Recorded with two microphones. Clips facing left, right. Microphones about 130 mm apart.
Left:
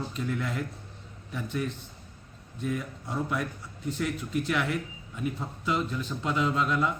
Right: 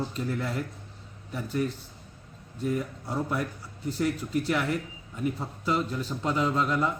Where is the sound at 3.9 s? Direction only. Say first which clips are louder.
Right 3 dB; 35° right (ahead or behind).